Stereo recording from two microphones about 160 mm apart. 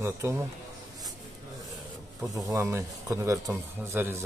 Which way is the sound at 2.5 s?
15° right (ahead or behind).